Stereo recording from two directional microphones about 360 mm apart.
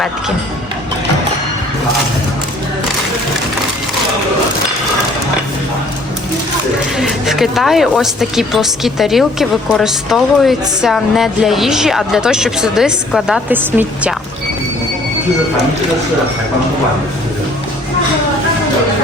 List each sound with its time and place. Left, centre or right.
6.9 s speech: centre